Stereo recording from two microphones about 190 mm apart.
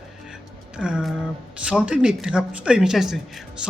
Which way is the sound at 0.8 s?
5° right (ahead or behind).